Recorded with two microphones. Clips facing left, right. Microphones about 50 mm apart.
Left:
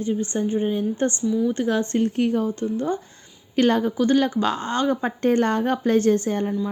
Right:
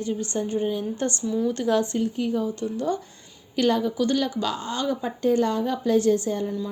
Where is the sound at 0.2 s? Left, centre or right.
Left.